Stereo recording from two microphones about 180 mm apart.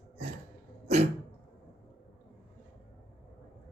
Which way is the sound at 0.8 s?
35° right (ahead or behind).